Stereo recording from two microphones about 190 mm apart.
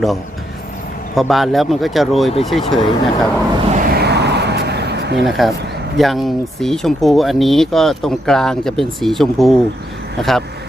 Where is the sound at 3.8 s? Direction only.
55° right (ahead or behind).